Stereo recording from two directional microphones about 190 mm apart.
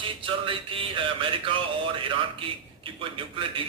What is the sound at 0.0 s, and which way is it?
A man's voice, 25° right (ahead or behind).